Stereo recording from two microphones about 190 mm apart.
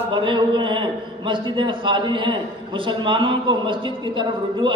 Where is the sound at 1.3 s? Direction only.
25° right (ahead or behind).